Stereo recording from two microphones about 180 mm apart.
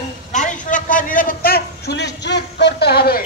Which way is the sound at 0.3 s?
45° left (ahead or behind).